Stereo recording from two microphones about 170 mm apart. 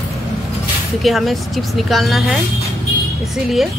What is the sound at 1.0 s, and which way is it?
A woman's voice, centre (ahead or behind).